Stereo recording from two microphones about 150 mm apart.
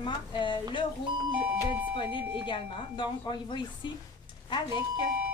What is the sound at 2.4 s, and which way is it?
A woman's voice, 30° left (ahead or behind).